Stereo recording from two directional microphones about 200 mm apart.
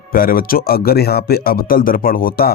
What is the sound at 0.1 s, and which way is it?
A man's voice, 45° left (ahead or behind).